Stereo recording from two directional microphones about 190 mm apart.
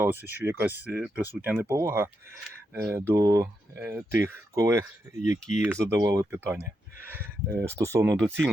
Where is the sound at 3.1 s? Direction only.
20° right (ahead or behind).